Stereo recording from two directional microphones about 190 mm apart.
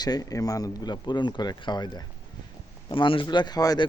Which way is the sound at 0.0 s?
20° left (ahead or behind).